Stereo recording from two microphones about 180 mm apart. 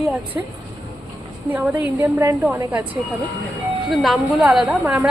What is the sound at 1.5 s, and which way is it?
Speech, 10° right (ahead or behind).